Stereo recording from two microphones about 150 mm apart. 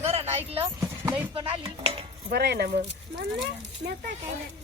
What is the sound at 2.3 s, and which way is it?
Speech, 90° right.